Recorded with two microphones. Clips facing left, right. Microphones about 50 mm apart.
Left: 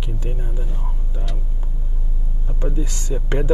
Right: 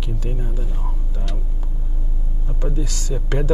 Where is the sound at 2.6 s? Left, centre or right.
Left.